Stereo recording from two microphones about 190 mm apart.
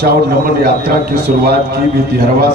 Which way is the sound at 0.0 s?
55° right (ahead or behind).